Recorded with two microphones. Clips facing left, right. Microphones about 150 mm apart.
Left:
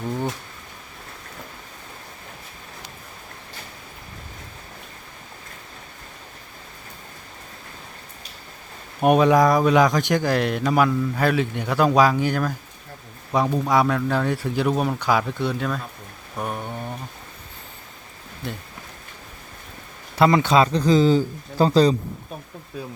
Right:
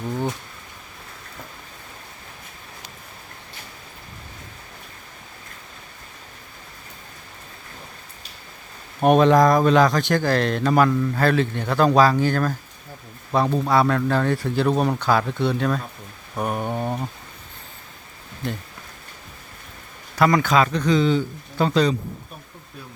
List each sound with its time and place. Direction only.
9.0 s speech: 5° left (ahead or behind)
16.6 s a sound: 35° right (ahead or behind)
20.1 s speech: 25° left (ahead or behind)